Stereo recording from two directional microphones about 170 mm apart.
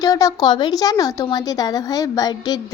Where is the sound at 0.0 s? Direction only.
20° left (ahead or behind).